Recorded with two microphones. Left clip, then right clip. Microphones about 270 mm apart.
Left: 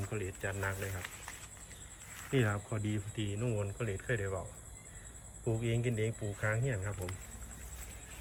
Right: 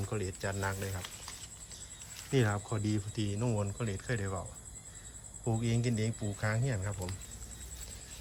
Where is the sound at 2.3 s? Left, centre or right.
Centre.